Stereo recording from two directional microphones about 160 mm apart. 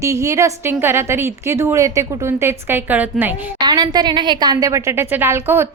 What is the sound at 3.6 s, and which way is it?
A woman's voice, 25° right (ahead or behind).